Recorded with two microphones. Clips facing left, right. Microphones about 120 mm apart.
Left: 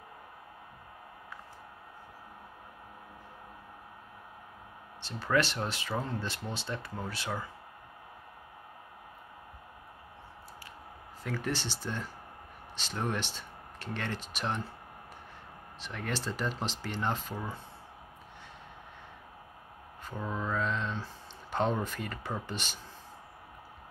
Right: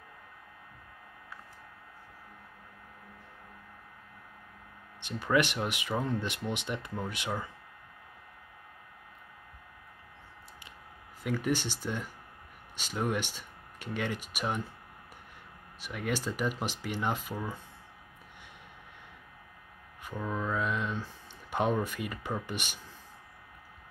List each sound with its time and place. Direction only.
5.0 s speech: 15° right (ahead or behind)
11.2 s speech: 15° right (ahead or behind)
15.8 s speech: 10° right (ahead or behind)
20.2 s mantra: 15° left (ahead or behind)
20.5 s speech: 10° right (ahead or behind)